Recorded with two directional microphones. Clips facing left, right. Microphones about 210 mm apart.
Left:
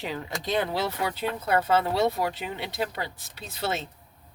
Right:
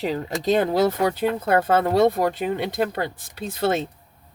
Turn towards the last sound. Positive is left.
turn(degrees=-50)  # may be behind; listen again after turning